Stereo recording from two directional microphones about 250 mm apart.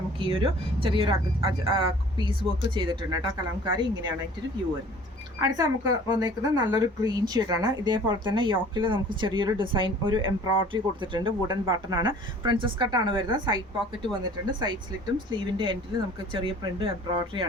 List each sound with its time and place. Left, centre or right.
0.2 s speech: right
5.4 s speech: centre